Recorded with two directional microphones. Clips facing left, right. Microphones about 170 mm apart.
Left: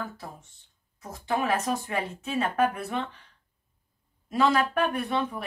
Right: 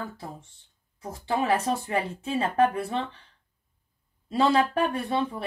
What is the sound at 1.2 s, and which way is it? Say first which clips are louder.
Speech: right 2 dB; 30° right (ahead or behind).